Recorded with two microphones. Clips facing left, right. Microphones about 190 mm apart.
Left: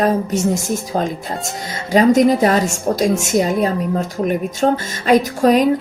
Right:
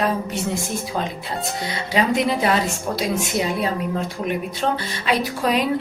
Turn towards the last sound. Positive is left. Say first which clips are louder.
# left 7 dB
turn(degrees=45)  # may be behind; listen again after turning